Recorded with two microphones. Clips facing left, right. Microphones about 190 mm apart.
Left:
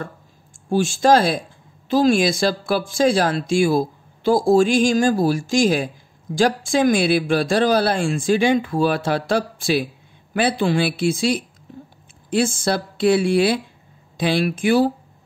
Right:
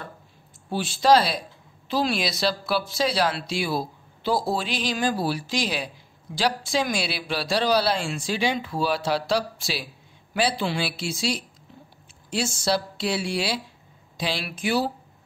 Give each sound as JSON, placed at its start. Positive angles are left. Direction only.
{"t": 0.7, "sound": "speech", "side_deg": 45}
{"t": 11.7, "sound": "a sound", "side_deg": 45}
{"t": 12.3, "sound": "speech", "side_deg": 55}